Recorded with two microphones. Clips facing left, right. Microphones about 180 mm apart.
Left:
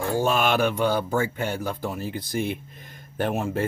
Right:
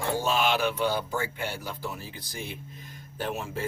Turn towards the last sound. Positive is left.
turn(degrees=55)  # may be behind; listen again after turning